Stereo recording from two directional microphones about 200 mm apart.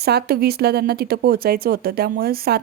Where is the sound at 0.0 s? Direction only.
50° right (ahead or behind).